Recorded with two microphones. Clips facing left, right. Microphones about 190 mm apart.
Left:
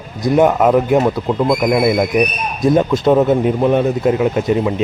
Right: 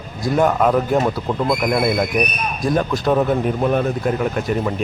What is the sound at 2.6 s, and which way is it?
Speech, 20° left (ahead or behind).